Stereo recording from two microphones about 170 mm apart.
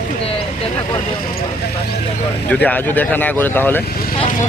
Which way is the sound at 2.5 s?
10° left (ahead or behind).